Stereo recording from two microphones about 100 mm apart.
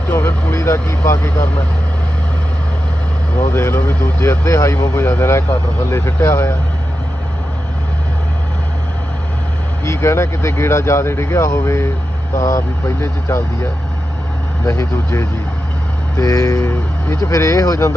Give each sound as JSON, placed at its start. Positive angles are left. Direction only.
{"t": 0.1, "sound": "speech", "side_deg": 25}
{"t": 3.5, "sound": "speech", "side_deg": 25}
{"t": 9.8, "sound": "speech", "side_deg": 30}